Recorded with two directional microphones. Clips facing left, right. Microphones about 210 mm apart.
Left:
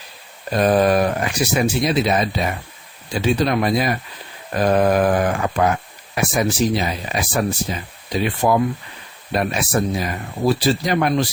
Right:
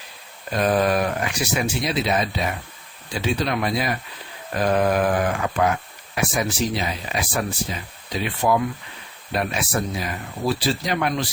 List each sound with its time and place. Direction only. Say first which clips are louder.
0.5 s speech: left 4 dB; 40° left (ahead or behind)